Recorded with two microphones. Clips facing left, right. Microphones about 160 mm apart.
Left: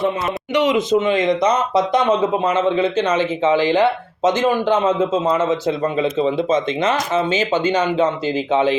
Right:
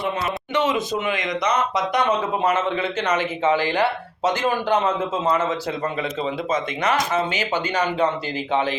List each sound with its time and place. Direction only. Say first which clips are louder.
0.5 s speech: left 7 dB; 15° left (ahead or behind)
2.4 s speech: left 5 dB; 15° left (ahead or behind)
5.3 s speech: left 5 dB; 20° left (ahead or behind)